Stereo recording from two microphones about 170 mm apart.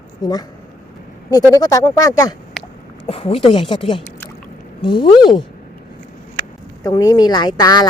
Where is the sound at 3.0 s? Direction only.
35° left (ahead or behind).